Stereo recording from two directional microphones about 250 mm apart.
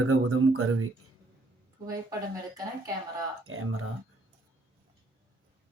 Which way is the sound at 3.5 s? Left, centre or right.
Right.